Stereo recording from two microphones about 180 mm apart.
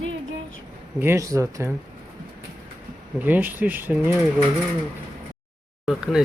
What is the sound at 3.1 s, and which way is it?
Speech, 10° right (ahead or behind).